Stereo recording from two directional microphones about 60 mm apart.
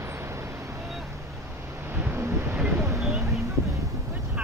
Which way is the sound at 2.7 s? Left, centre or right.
Right.